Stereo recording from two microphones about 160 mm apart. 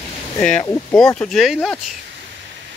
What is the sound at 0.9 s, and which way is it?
Speech, 5° left (ahead or behind).